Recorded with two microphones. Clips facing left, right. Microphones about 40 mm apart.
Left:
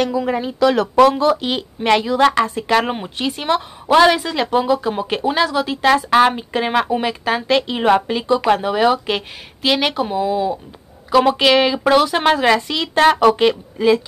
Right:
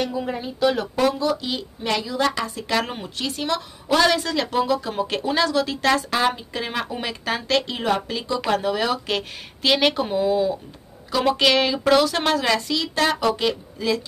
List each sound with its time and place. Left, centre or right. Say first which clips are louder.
0.0 s speech: left 7 dB; left
2.8 s speech: left 6 dB; left
6.0 s speech: left 8 dB; left
7.0 s speech: left 7 dB; centre
7.8 s speech: left 8 dB; left
8.4 s speech: left 3 dB; centre
9.6 s speech: left 2 dB; centre; by 14.0 s left